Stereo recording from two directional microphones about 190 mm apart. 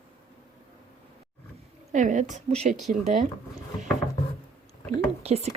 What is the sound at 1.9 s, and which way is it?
Speech, 40° right (ahead or behind).